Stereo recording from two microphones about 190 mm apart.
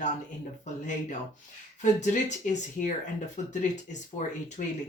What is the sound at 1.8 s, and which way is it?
Speech, 40° left (ahead or behind).